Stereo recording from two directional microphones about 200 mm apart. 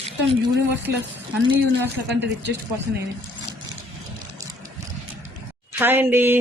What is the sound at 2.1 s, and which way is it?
Speech, 60° right (ahead or behind).